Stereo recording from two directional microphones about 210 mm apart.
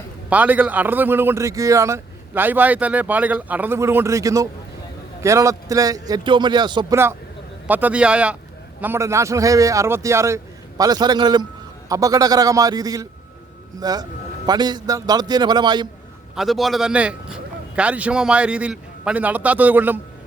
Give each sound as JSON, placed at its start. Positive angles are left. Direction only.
{"t": 0.3, "sound": "a man's voice", "side_deg": -5}
{"t": 16.3, "sound": "a man's voice", "side_deg": 0}